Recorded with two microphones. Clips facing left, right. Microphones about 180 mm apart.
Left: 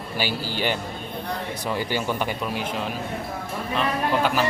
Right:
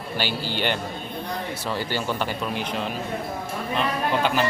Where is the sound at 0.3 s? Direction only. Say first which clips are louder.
Even; 40° left (ahead or behind).